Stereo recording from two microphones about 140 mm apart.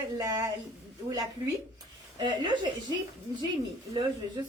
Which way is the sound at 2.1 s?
35° right (ahead or behind).